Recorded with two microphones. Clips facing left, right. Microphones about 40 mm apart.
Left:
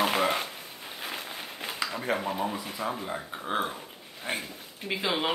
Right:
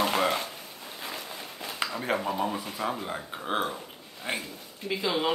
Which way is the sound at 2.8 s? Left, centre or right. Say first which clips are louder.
Right 1 dB; right.